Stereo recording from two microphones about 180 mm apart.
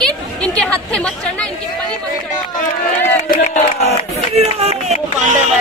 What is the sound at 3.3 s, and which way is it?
Speech, 45° left (ahead or behind).